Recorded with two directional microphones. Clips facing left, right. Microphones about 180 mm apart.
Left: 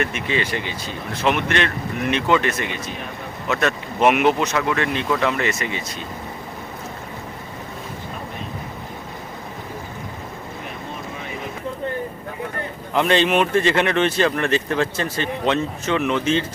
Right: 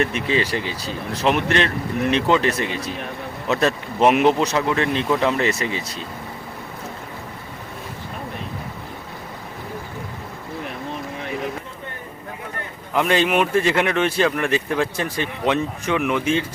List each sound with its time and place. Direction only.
0.0 s speech: 35° right (ahead or behind)
12.9 s speech: 5° right (ahead or behind)